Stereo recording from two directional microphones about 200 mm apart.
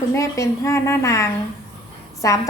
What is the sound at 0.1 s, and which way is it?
A woman's voice, 15° left (ahead or behind).